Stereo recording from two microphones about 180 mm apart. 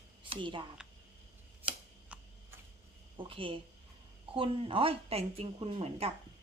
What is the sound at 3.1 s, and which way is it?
A woman's voice, 30° right (ahead or behind).